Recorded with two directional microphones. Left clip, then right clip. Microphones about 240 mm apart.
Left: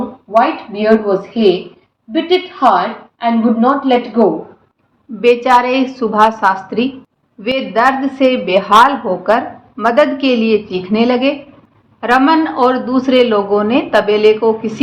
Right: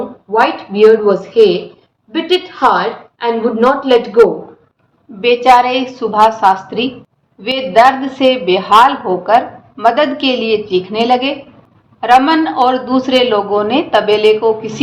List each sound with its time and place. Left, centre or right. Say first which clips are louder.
0.3 s a woman's voice: right 1 dB; centre
2.6 s a woman's voice: even; centre
5.2 s a woman's voice: right 2 dB; left